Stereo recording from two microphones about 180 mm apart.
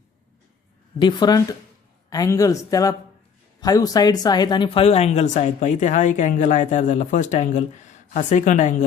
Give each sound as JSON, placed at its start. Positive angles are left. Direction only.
{"t": 0.9, "sound": "speech", "side_deg": 25}